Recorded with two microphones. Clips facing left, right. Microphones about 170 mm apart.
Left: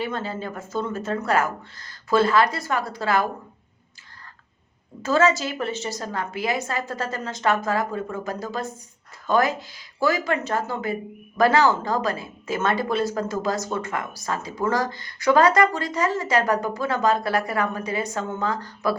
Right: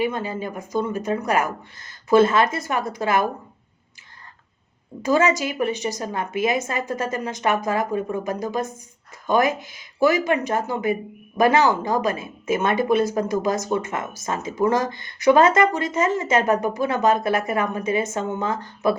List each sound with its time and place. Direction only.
0.0 s a woman's voice: 15° right (ahead or behind)
5.0 s a woman's voice: 15° right (ahead or behind)